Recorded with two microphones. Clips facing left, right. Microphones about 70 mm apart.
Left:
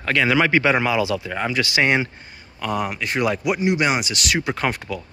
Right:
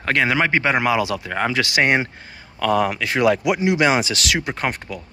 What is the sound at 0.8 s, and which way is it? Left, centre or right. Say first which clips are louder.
Speech: right 1 dB; right.